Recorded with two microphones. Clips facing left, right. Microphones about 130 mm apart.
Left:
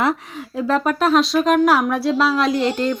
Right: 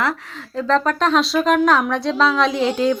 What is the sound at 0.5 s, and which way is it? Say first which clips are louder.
Speech: right 1 dB; 10° left (ahead or behind).